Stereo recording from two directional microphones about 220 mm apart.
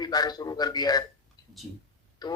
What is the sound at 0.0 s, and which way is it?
A man's voice, 20° left (ahead or behind).